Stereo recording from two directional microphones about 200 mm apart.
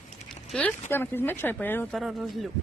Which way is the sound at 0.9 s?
10° left (ahead or behind).